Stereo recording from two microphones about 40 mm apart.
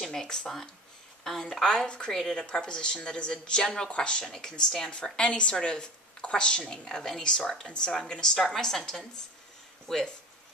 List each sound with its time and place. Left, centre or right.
0.0 s speech: centre
2.4 s a woman's voice: left
3.6 s speech: centre
3.9 s a woman's voice: left
4.2 s a woman's voice: centre